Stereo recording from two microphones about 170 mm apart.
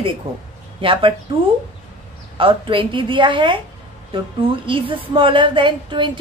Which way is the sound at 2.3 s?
30° right (ahead or behind).